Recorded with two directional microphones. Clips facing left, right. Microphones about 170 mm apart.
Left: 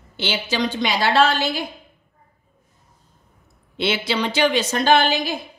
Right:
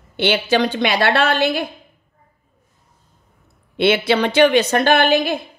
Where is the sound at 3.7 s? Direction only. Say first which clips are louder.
Right 7 dB; 60° right (ahead or behind).